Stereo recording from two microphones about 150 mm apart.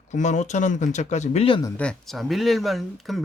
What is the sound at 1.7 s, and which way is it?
Speech, 5° left (ahead or behind).